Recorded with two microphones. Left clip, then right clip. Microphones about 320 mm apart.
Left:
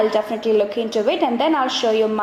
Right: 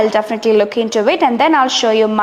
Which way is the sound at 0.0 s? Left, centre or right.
Right.